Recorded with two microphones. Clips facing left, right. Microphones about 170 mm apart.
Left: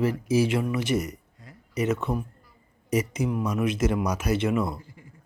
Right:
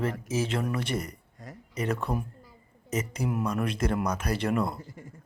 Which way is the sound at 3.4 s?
5° left (ahead or behind).